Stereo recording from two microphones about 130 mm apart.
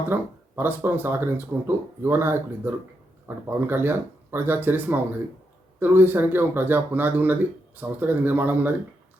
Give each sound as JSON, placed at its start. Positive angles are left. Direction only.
{"t": 0.1, "sound": "speech", "side_deg": -15}